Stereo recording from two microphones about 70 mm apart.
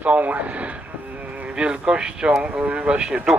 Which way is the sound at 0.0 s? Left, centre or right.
Right.